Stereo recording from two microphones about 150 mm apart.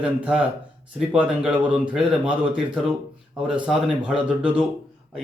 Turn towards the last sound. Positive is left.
turn(degrees=-5)  # may be behind; listen again after turning